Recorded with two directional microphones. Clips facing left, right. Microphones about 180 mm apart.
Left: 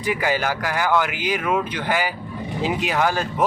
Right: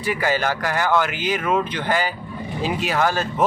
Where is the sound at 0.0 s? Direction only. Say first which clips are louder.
Even; 15° left (ahead or behind).